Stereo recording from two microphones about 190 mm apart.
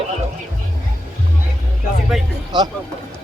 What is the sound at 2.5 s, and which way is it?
Speech, 25° right (ahead or behind).